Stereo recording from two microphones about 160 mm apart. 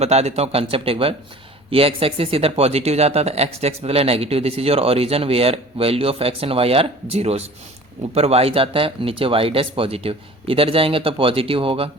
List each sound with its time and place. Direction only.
0.0 s speech: 40° right (ahead or behind)